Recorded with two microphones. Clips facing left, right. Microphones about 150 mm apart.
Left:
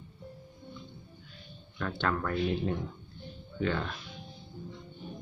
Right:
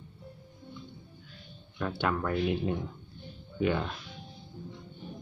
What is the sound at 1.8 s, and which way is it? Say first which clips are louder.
Speech: right 1 dB; 10° right (ahead or behind).